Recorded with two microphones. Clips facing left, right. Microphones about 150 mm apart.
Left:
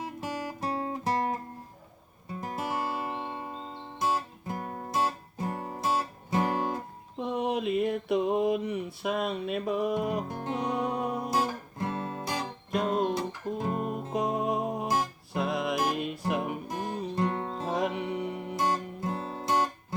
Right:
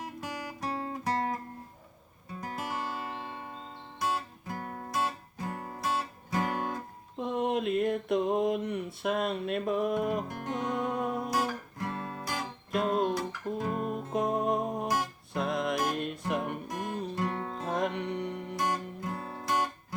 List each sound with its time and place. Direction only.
0.0 s guitar: 30° left (ahead or behind)
2.4 s music: 25° left (ahead or behind)
7.2 s a sound: centre (ahead or behind)
10.2 s music: 25° left (ahead or behind)
10.9 s music: centre (ahead or behind)
11.3 s guitar: 25° left (ahead or behind)
12.7 s music: centre (ahead or behind)
17.2 s music: 25° left (ahead or behind)
17.7 s music: 5° left (ahead or behind)
18.5 s music: 30° left (ahead or behind)